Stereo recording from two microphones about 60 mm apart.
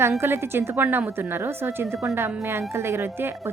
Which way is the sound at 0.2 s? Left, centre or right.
Right.